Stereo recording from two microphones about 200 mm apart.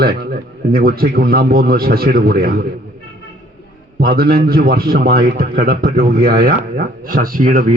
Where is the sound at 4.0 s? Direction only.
50° right (ahead or behind).